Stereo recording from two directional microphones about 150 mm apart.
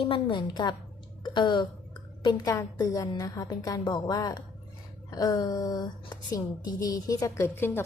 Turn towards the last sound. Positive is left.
turn(degrees=15)  # may be behind; listen again after turning